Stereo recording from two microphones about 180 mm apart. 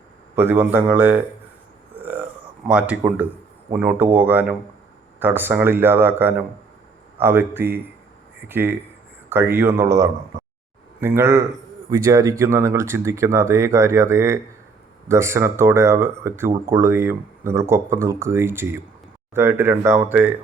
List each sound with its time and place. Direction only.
0.3 s speech: 10° right (ahead or behind)
2.0 s burping: 10° right (ahead or behind)
2.6 s speech: 5° right (ahead or behind)